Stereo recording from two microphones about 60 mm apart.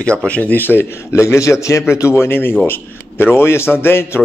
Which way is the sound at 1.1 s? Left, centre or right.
Left.